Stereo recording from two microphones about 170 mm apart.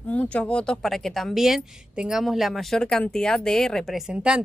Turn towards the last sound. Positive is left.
turn(degrees=-5)  # may be behind; listen again after turning